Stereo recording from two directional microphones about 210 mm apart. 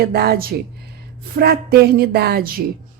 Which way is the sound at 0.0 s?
50° right (ahead or behind).